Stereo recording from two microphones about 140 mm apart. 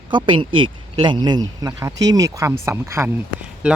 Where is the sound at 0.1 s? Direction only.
35° right (ahead or behind); by 3.1 s 20° right (ahead or behind).